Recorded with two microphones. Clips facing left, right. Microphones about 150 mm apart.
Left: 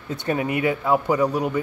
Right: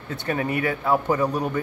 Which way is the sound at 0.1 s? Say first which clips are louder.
Left 2 dB; 20° left (ahead or behind).